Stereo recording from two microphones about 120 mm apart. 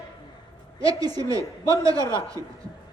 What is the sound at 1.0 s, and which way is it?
A man's voice, 30° right (ahead or behind).